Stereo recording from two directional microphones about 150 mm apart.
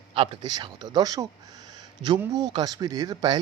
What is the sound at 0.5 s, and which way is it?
Speech, 25° right (ahead or behind).